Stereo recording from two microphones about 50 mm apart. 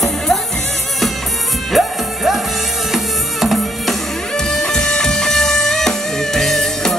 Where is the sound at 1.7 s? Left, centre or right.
Centre.